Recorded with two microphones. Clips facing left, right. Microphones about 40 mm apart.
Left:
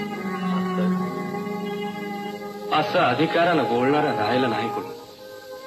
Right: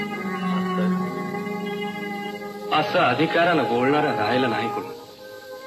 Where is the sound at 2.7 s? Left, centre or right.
Centre.